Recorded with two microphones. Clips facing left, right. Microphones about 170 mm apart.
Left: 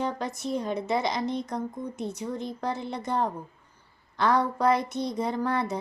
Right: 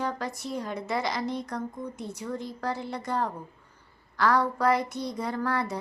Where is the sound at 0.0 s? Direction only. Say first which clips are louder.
Left 2 dB; 20° left (ahead or behind).